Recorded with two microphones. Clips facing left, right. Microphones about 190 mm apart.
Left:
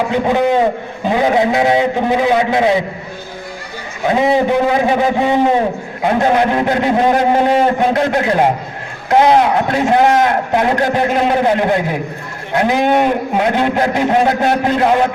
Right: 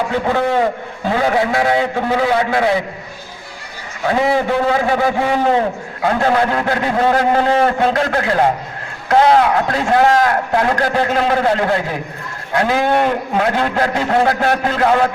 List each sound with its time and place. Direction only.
0.1 s a man's voice: 20° left (ahead or behind)
4.0 s a man's voice: 20° left (ahead or behind)